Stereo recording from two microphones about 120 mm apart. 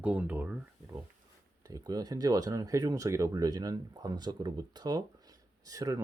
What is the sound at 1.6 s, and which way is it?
Speech, 30° right (ahead or behind).